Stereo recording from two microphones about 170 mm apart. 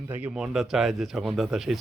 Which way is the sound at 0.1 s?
10° right (ahead or behind).